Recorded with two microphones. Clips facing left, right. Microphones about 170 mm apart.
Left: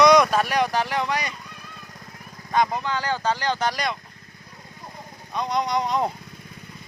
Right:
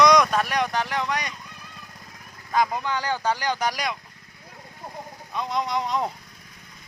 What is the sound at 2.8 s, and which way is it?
Speech, 15° right (ahead or behind).